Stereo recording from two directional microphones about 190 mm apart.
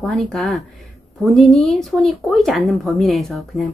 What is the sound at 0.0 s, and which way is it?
Speech, 5° left (ahead or behind).